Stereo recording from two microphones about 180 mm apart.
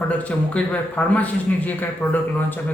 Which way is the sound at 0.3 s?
5° left (ahead or behind).